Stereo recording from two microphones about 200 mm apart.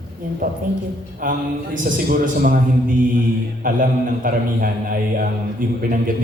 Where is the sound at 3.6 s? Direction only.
45° right (ahead or behind).